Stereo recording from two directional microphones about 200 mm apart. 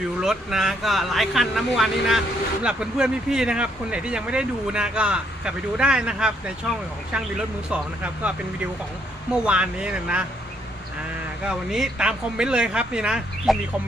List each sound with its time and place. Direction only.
0.2 s speech: centre (ahead or behind)
9.3 s speech: 5° right (ahead or behind)
11.4 s speech: 5° right (ahead or behind)